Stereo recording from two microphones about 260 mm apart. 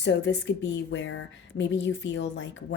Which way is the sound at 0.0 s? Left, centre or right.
Left.